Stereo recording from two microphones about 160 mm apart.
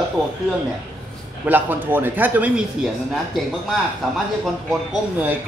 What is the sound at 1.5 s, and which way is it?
A man's voice, 10° right (ahead or behind).